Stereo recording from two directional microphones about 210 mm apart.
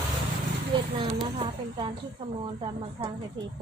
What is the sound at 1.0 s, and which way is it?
Speech, 25° right (ahead or behind).